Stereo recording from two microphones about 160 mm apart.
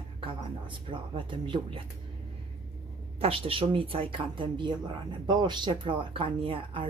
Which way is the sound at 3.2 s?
35° right (ahead or behind).